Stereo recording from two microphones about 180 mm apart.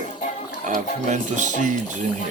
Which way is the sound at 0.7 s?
45° right (ahead or behind).